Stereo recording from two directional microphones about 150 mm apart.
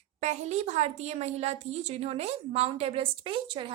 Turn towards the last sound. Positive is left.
turn(degrees=-35)  # may be behind; listen again after turning